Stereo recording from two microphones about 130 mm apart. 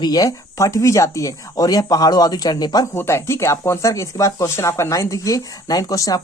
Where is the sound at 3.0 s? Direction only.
20° left (ahead or behind).